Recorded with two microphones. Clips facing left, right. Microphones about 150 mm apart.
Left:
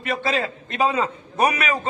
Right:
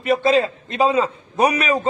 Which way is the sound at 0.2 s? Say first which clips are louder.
Right 7 dB; 25° right (ahead or behind).